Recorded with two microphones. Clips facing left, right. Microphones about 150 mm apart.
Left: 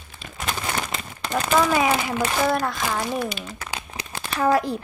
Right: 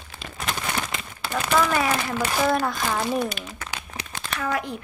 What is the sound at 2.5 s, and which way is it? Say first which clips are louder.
Speech: even; centre (ahead or behind).